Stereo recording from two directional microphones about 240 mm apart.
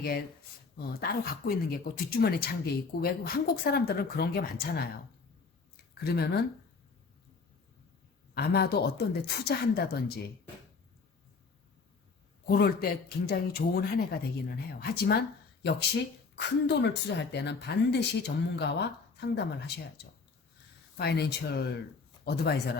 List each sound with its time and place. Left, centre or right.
0.8 s speech: left
5.7 s a sound: left
8.4 s speech: left
12.5 s speech: left
16.3 s speech: left
20.9 s speech: left